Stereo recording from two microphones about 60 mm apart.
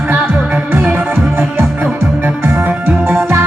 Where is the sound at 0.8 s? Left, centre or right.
Right.